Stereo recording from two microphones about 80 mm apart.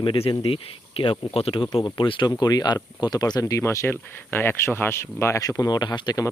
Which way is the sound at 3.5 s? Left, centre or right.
Left.